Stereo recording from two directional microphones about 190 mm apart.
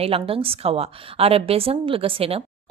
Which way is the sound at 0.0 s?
30° right (ahead or behind).